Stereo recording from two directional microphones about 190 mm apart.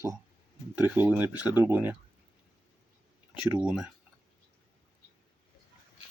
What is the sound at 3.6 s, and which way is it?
Speech, 5° right (ahead or behind).